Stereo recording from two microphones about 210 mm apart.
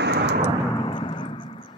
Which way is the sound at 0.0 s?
55° right (ahead or behind).